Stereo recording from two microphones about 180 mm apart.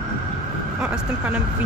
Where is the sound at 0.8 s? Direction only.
5° right (ahead or behind).